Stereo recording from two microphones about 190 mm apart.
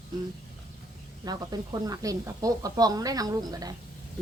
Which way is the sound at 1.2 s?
20° right (ahead or behind).